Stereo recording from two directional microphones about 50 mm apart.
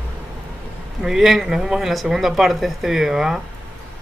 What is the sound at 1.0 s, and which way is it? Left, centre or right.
Speech, centre.